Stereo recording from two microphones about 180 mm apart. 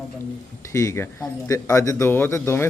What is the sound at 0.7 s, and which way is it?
A man's voice, 15° left (ahead or behind).